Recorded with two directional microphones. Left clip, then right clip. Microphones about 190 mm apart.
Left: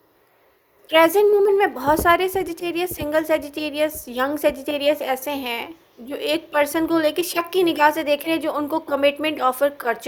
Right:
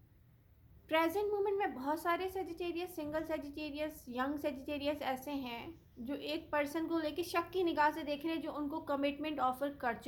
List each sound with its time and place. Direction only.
0.9 s a woman's voice: 40° left (ahead or behind)